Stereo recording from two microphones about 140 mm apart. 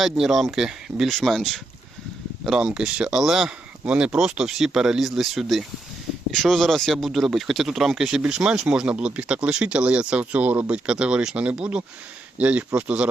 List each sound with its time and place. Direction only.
0.0 s speech: centre (ahead or behind)